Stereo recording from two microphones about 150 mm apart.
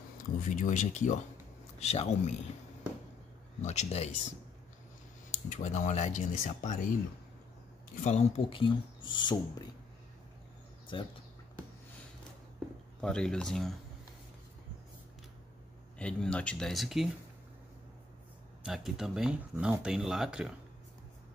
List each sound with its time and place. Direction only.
0.4 s speech: 60° left (ahead or behind)
3.6 s speech: 45° left (ahead or behind)
5.3 s speech: 50° left (ahead or behind)
8.0 s speech: 45° left (ahead or behind); by 9.7 s 30° left (ahead or behind)
10.9 s speech: 30° left (ahead or behind)
13.0 s speech: 5° left (ahead or behind)
16.0 s speech: 5° left (ahead or behind)
18.6 s speech: centre (ahead or behind)